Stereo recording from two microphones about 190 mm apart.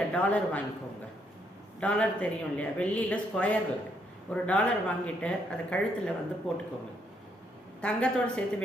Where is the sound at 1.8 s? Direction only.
5° left (ahead or behind).